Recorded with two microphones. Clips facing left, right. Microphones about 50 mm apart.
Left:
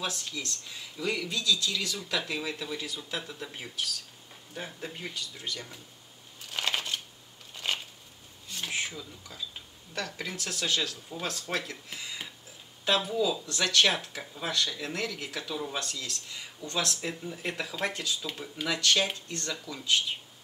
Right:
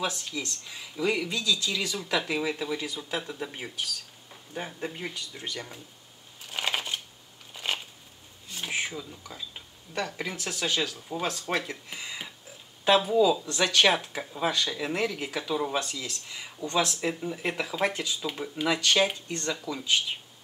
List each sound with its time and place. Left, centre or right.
0.0 s speech: centre
6.4 s a sound: centre
9.9 s speech: centre